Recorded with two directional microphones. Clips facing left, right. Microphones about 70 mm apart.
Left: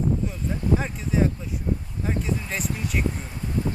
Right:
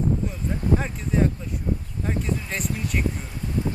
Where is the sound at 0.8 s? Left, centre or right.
Centre.